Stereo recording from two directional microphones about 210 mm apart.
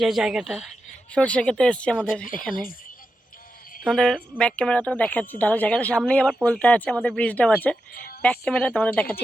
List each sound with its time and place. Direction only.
0.0 s a woman's voice: centre (ahead or behind)
3.8 s a woman's voice: centre (ahead or behind)
7.9 s a sound: 45° left (ahead or behind)
8.2 s speech: 5° left (ahead or behind)